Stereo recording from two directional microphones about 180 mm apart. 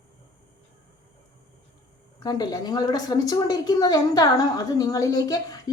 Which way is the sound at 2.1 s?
20° left (ahead or behind).